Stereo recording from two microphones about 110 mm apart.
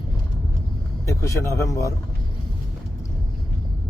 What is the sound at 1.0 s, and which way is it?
Speech, 25° left (ahead or behind).